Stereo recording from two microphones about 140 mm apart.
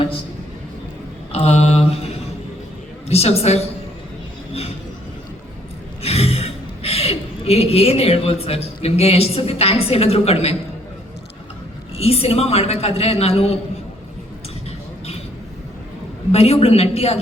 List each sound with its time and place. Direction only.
1.3 s a sound: 50° left (ahead or behind)
3.1 s a woman's voice: 45° left (ahead or behind)
6.0 s speech: 45° left (ahead or behind)
11.9 s a woman's voice: 45° left (ahead or behind)
16.3 s a woman's voice: 45° left (ahead or behind)